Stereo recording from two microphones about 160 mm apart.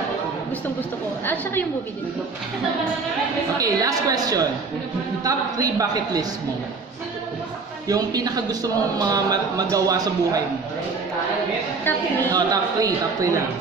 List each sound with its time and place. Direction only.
1.2 s a woman's voice: 15° left (ahead or behind)
3.5 s speech: 20° right (ahead or behind)
7.9 s speech: 25° right (ahead or behind)
12.3 s speech: 25° right (ahead or behind)